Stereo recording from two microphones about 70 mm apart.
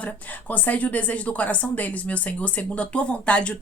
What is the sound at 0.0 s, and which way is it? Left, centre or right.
Speech, left.